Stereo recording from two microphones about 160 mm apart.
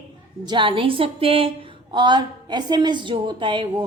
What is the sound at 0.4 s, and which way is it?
A woman's voice, 30° right (ahead or behind).